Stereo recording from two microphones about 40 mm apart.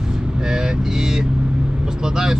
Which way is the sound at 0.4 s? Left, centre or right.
Centre.